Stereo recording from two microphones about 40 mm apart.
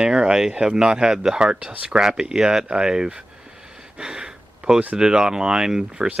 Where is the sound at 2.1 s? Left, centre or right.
Centre.